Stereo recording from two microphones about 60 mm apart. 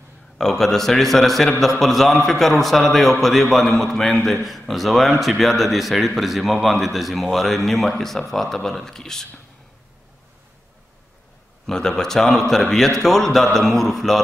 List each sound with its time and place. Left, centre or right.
0.4 s a man's voice: centre
11.6 s a man's voice: centre